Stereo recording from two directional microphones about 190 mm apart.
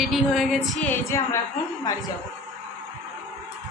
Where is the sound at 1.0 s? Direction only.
15° left (ahead or behind).